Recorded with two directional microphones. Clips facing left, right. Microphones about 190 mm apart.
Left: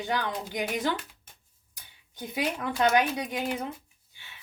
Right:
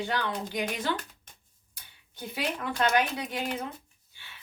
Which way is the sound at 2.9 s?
15° left (ahead or behind).